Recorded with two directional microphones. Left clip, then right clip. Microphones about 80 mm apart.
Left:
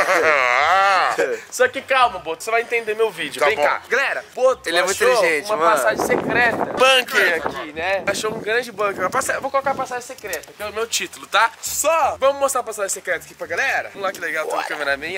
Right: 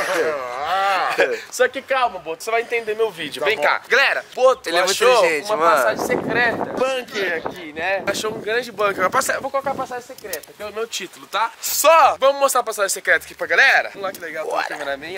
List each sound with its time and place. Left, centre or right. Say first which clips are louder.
0.0 s a sound: left 4 dB; centre
0.3 s a sound: left 7 dB; centre
1.1 s speech: right 2 dB; centre
1.6 s speech: left 2 dB; centre
6.8 s speech: left 11 dB; left
7.2 s speech: left 4 dB; centre
11.8 s speech: right 5 dB; right
12.2 s speech: right 2 dB; centre
13.0 s speech: right 6 dB; right
14.0 s speech: left 3 dB; centre